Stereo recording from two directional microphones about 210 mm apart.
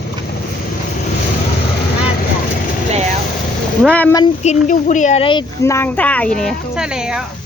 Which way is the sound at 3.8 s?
5° left (ahead or behind).